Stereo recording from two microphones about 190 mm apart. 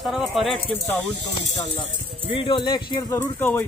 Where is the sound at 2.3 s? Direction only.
30° left (ahead or behind); by 3.6 s 10° left (ahead or behind).